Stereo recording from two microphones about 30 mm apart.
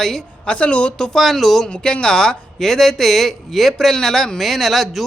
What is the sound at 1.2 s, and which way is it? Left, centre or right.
Speech, centre.